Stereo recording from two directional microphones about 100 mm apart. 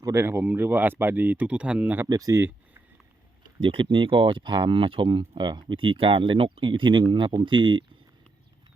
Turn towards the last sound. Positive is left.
turn(degrees=-50)  # may be behind; listen again after turning